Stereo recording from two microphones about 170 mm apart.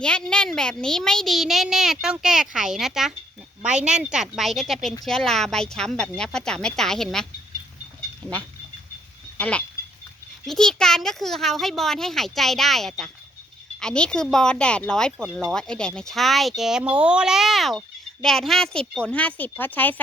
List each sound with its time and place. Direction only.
0.0 s speech: 5° left (ahead or behind)
9.4 s speech: 5° left (ahead or behind)